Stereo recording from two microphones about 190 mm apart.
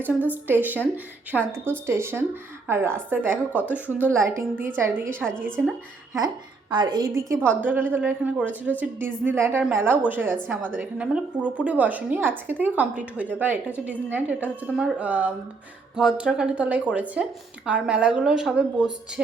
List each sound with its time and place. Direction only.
0.0 s a woman's voice: 10° right (ahead or behind)
6.1 s a woman's voice: 20° right (ahead or behind); by 18.9 s 5° right (ahead or behind)